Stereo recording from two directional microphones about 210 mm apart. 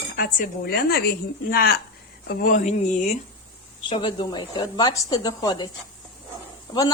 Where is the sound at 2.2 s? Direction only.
45° left (ahead or behind).